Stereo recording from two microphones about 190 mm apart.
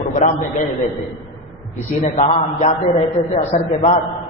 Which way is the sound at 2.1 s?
40° left (ahead or behind).